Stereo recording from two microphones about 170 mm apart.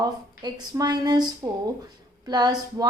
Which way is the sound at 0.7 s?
20° right (ahead or behind).